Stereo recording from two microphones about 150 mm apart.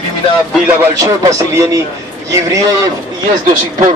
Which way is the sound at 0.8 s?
20° right (ahead or behind).